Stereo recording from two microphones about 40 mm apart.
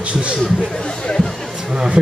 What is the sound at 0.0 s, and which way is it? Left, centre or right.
Speech, right.